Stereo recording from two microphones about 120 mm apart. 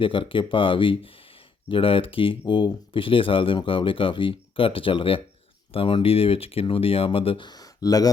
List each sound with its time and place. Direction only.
0.0 s speech: 45° left (ahead or behind)